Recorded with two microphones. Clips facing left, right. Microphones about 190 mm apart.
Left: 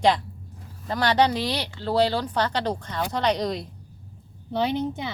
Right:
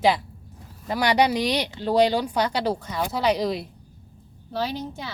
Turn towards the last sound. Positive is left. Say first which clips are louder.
# left 4 dB
turn(degrees=20)  # may be behind; listen again after turning